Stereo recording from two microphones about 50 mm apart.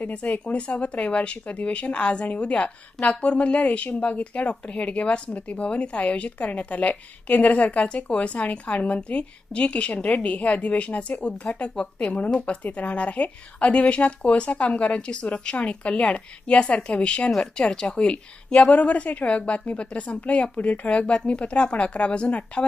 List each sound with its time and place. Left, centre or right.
0.0 s speech: left